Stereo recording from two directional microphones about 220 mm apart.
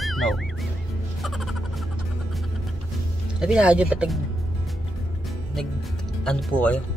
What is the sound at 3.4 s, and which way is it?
Speech, 5° right (ahead or behind).